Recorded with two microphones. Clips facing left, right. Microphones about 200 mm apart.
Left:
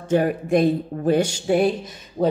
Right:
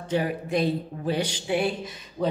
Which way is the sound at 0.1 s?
50° left (ahead or behind).